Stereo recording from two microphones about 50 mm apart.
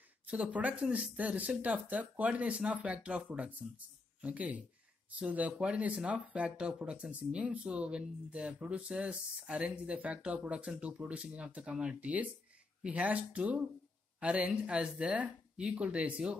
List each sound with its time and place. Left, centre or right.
0.3 s speech: right